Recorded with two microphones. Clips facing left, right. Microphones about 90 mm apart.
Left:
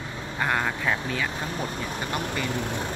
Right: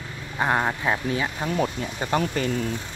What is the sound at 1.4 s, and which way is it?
Speech, 45° right (ahead or behind).